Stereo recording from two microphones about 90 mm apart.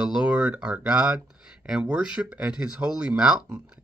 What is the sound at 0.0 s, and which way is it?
Speech, 10° right (ahead or behind).